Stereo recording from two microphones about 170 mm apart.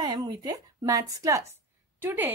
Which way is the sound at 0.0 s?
25° right (ahead or behind).